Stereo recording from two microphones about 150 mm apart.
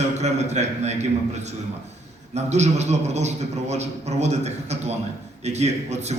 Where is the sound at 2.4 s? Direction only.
50° right (ahead or behind).